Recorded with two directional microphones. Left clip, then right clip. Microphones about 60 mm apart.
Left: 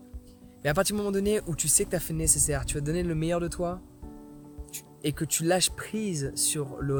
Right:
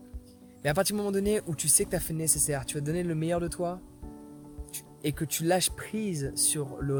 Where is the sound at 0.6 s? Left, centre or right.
Left.